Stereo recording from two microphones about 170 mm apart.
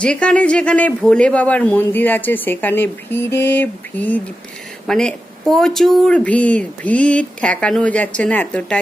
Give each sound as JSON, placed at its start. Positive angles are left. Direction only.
{"t": 0.0, "sound": "speech", "side_deg": 5}